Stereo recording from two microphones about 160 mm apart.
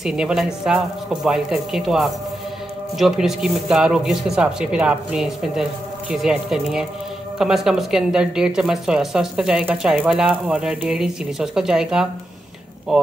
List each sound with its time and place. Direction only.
0.0 s a woman's voice: 5° right (ahead or behind)